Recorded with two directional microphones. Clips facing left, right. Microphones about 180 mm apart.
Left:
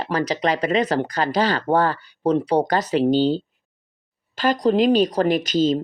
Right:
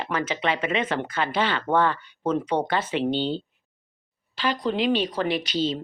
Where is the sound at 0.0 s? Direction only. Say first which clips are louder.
Left 5 dB; 35° left (ahead or behind).